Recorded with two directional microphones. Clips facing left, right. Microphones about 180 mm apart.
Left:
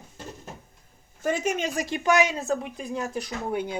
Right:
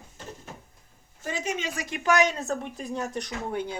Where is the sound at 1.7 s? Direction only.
35° left (ahead or behind).